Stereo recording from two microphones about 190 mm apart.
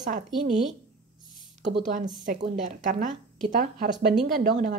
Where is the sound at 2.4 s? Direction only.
45° right (ahead or behind).